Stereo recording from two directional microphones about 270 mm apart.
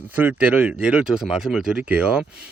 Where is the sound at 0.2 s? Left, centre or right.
Centre.